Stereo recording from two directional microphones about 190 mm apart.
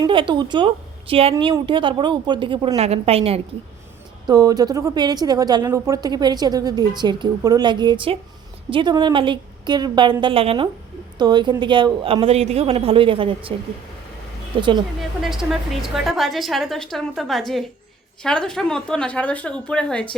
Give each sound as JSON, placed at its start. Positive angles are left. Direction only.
{"t": 0.0, "sound": "a woman's voice", "side_deg": -25}
{"t": 4.3, "sound": "a woman's voice", "side_deg": -20}
{"t": 14.6, "sound": "a woman's voice", "side_deg": -25}
{"t": 15.2, "sound": "a woman's voice", "side_deg": 0}